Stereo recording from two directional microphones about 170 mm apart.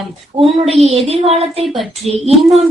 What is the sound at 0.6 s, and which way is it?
Speech, 35° right (ahead or behind).